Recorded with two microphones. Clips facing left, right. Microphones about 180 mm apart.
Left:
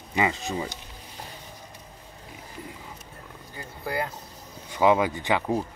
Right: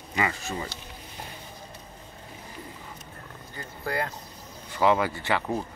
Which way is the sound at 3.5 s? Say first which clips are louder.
Even; 10° left (ahead or behind).